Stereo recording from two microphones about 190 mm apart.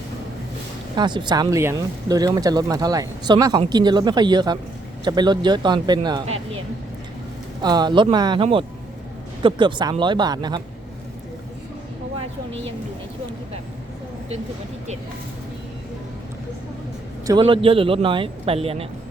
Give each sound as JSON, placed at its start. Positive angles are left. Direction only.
{"t": 0.9, "sound": "speech", "side_deg": -25}
{"t": 7.6, "sound": "speech", "side_deg": -20}
{"t": 17.2, "sound": "speech", "side_deg": -25}